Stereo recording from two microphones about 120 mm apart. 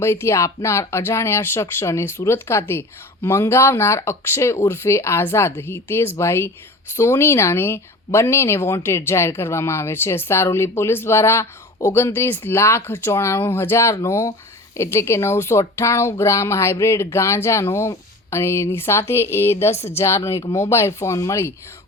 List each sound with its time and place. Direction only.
0.0 s speech: 20° left (ahead or behind)